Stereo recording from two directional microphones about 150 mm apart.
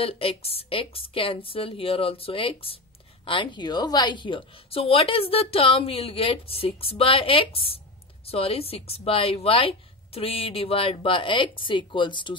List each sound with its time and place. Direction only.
0.0 s speech: 40° left (ahead or behind)